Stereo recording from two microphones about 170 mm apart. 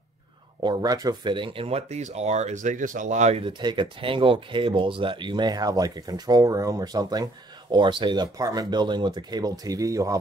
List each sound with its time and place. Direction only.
0.6 s speech: 25° right (ahead or behind); by 3.4 s 40° right (ahead or behind)
3.4 s speech: 25° right (ahead or behind)